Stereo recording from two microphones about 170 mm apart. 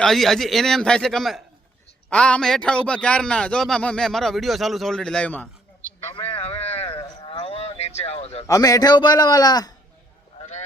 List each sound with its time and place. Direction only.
0.0 s a man's voice: centre (ahead or behind)
6.1 s a sound: 30° left (ahead or behind)
8.4 s a man's voice: 20° left (ahead or behind)